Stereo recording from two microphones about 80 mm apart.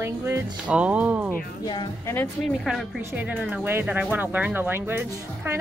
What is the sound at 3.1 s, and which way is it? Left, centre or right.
Speech, centre.